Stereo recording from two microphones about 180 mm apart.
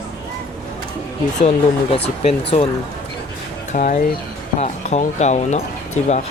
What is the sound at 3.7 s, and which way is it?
Speech, 40° left (ahead or behind).